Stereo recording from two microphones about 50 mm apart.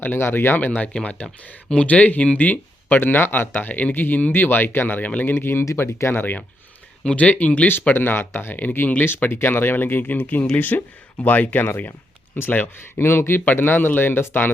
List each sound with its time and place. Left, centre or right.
0.0 s speech: left
0.6 s speech: left
5.3 s speech: left
6.1 s speech: left
7.0 s speech: left
7.7 s speech: left
12.6 s speech: left
13.4 s speech: left